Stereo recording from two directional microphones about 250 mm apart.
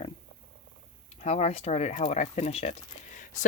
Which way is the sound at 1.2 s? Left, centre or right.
Left.